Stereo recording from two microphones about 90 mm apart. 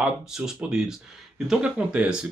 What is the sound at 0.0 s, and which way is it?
Speech, 10° right (ahead or behind).